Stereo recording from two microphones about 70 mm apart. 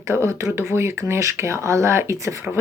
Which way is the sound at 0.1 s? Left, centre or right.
Right.